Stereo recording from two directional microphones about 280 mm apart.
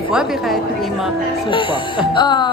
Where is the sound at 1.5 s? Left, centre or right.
Centre.